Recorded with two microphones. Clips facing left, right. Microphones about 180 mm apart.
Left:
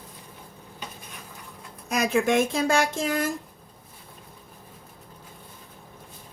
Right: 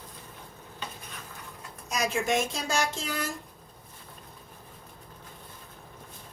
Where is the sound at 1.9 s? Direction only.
55° left (ahead or behind).